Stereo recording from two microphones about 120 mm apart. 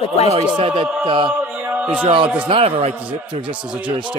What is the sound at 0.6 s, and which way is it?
Speech, 45° right (ahead or behind).